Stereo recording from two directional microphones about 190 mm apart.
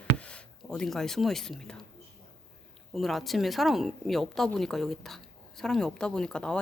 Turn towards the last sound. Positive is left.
turn(degrees=5)  # may be behind; listen again after turning